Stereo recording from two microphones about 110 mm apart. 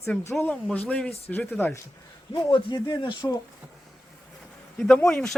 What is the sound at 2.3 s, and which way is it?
Speech, 45° left (ahead or behind).